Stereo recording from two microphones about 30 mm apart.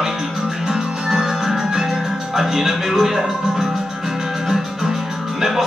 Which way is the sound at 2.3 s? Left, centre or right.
Centre.